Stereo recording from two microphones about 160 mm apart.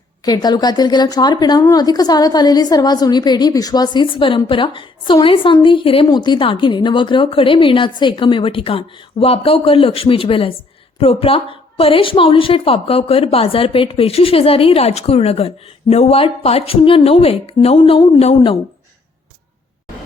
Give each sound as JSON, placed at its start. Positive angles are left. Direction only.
{"t": 0.3, "sound": "a woman's voice", "side_deg": 25}